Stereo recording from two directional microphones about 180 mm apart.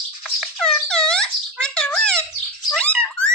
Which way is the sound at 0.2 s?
Centre (ahead or behind).